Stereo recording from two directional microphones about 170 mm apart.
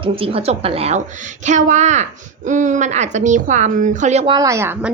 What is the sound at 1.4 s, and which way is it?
A woman's voice, 45° right (ahead or behind).